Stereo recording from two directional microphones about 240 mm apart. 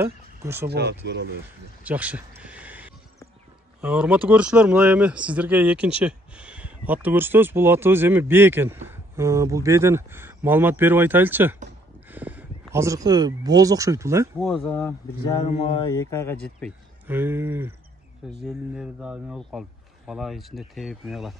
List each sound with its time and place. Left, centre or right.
0.0 s a sound: centre
0.7 s speech: right
1.8 s a sound: centre
3.8 s speech: centre
12.1 s a sound: centre
12.7 s speech: centre
14.4 s speech: centre
15.3 s speech: left
15.9 s speech: centre
17.1 s speech: centre